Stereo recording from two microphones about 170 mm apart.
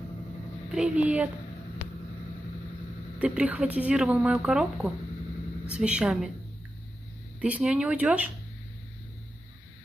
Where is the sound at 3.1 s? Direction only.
10° right (ahead or behind).